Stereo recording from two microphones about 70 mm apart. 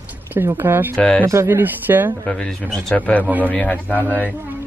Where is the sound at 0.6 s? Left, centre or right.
Right.